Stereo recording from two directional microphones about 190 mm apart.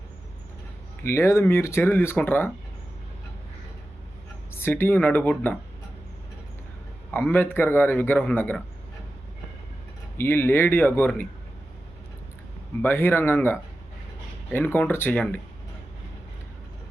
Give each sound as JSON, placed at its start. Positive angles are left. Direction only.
{"t": 1.0, "sound": "a man's voice", "side_deg": 15}
{"t": 4.5, "sound": "a man's voice", "side_deg": 10}
{"t": 7.1, "sound": "a man's voice", "side_deg": 10}
{"t": 10.2, "sound": "a man's voice", "side_deg": 10}
{"t": 12.8, "sound": "a man's voice", "side_deg": 10}